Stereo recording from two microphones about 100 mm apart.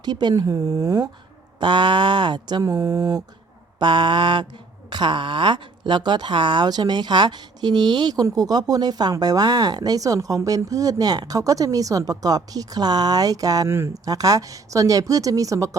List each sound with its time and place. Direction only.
0.0 s speech: 45° right (ahead or behind)
1.5 s speech: 50° right (ahead or behind)
3.8 s speech: 50° right (ahead or behind)
13.7 s speech: 25° right (ahead or behind)